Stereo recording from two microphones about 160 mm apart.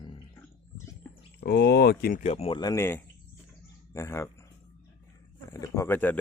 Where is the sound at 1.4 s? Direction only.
90° left; by 2.2 s 65° left (ahead or behind).